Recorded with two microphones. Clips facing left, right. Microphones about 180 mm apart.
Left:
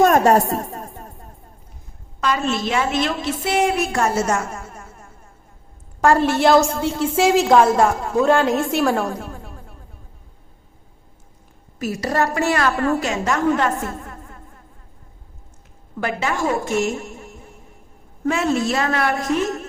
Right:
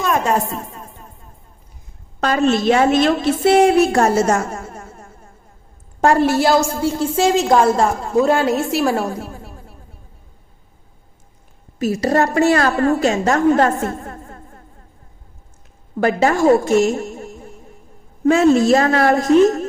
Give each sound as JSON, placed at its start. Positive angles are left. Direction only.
{"t": 0.0, "sound": "a woman's voice", "side_deg": 45}
{"t": 0.5, "sound": "music", "side_deg": 45}
{"t": 2.2, "sound": "a woman's voice", "side_deg": -50}
{"t": 3.4, "sound": "a woman's voice", "side_deg": -30}
{"t": 6.4, "sound": "a woman's voice", "side_deg": 0}
{"t": 11.8, "sound": "a woman's voice", "side_deg": -25}
{"t": 13.3, "sound": "a sound", "side_deg": -40}
{"t": 16.0, "sound": "a woman's voice", "side_deg": -40}
{"t": 18.3, "sound": "a woman's voice", "side_deg": -35}